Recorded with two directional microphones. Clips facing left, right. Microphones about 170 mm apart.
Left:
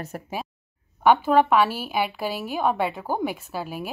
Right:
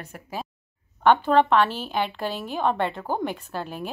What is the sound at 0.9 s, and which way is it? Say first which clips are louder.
A woman's voice: even; 10° left (ahead or behind).